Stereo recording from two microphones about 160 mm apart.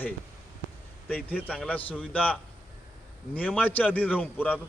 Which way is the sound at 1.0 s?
10° left (ahead or behind).